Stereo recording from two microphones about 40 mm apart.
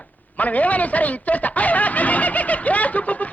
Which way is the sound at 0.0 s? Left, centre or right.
Left.